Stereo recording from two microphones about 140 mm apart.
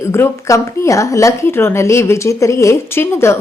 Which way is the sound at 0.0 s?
20° left (ahead or behind).